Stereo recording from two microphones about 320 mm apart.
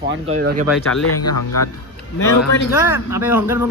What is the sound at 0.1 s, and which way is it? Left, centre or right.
Speech, right.